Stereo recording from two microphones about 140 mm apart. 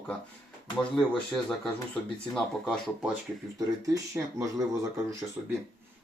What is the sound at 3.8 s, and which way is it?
Speech, 25° right (ahead or behind).